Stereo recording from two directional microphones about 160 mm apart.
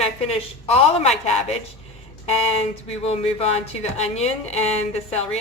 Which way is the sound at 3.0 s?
40° left (ahead or behind).